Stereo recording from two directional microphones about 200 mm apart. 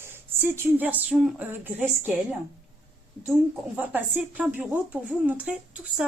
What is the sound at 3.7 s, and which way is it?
Speech, 5° right (ahead or behind).